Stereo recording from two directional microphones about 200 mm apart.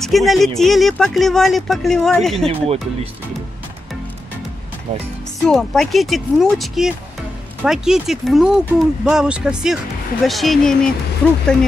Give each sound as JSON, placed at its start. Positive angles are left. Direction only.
{"t": 0.0, "sound": "speech", "side_deg": 0}
{"t": 2.4, "sound": "speech", "side_deg": -30}
{"t": 5.5, "sound": "speech", "side_deg": 0}